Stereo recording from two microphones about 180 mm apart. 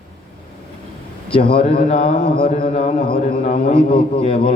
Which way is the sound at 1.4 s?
30° left (ahead or behind).